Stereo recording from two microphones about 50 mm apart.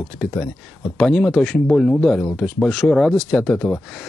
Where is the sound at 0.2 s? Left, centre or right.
Centre.